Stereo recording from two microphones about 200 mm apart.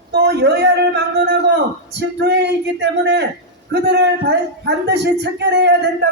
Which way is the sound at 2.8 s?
60° right (ahead or behind).